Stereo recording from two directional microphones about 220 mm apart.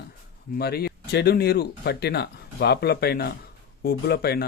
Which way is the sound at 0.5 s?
45° left (ahead or behind).